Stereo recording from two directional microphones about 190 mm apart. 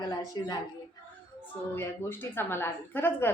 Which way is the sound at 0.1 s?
20° left (ahead or behind).